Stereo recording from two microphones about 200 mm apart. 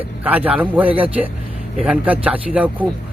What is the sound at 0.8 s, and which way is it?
Speech, 25° right (ahead or behind).